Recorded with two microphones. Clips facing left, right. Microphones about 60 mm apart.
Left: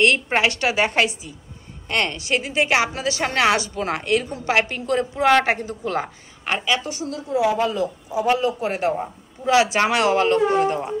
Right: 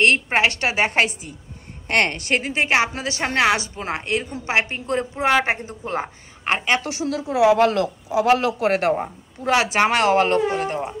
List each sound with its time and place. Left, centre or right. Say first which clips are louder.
0.4 s a woman's voice: even; right
1.9 s a woman's voice: right 2 dB; right
6.8 s a man's voice: right 4 dB; right
9.4 s a woman's voice: left 1 dB; right